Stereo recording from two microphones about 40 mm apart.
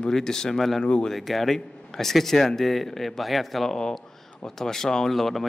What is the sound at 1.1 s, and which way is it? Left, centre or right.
A man's voice, centre.